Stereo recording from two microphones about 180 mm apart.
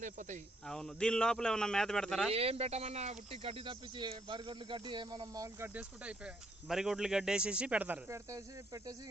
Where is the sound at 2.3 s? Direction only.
35° right (ahead or behind).